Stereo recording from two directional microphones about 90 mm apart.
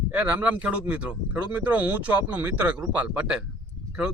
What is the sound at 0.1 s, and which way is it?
A man's voice, 15° right (ahead or behind).